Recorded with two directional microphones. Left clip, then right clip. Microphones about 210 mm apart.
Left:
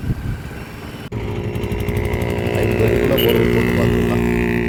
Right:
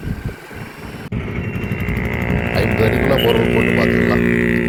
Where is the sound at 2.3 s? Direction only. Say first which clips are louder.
Right 1 dB; 55° left (ahead or behind).